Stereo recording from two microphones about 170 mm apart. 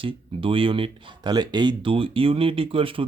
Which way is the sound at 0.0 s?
30° right (ahead or behind).